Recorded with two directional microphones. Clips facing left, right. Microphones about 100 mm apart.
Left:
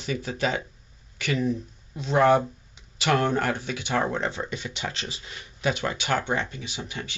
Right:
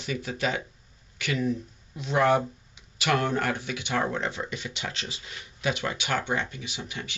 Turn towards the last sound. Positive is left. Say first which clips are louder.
# left 2 dB
turn(degrees=30)  # may be behind; listen again after turning